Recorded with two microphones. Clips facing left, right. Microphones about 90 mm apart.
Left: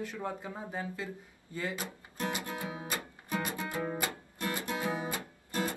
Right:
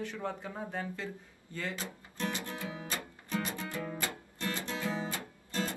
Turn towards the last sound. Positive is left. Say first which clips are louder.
# left 2 dB
turn(degrees=20)  # may be behind; listen again after turning